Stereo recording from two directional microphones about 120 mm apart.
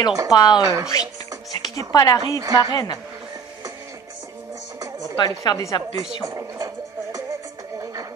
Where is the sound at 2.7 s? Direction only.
30° left (ahead or behind).